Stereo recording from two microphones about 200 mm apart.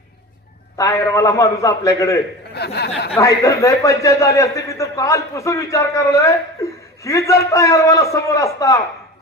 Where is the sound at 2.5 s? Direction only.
55° left (ahead or behind).